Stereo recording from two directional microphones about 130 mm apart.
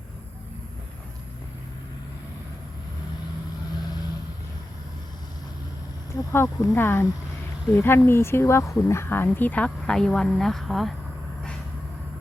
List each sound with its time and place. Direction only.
6.3 s speech: 20° left (ahead or behind); by 10.9 s centre (ahead or behind)